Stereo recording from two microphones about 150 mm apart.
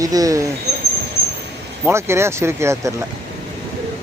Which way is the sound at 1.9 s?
15° right (ahead or behind).